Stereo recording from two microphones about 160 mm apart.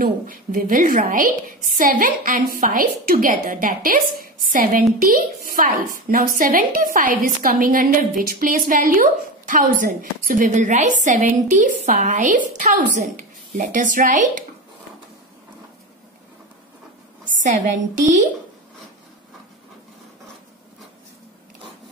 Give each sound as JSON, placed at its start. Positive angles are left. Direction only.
{"t": 0.0, "sound": "a woman's voice", "side_deg": -65}